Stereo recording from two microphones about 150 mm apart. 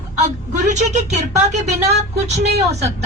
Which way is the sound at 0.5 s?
50° right (ahead or behind).